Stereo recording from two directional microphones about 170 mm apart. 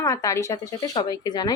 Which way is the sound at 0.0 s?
20° left (ahead or behind).